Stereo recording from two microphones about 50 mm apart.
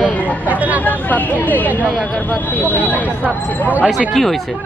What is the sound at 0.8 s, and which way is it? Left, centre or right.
Speech, left.